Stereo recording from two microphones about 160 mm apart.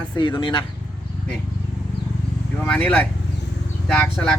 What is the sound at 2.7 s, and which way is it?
Speech, 5° left (ahead or behind).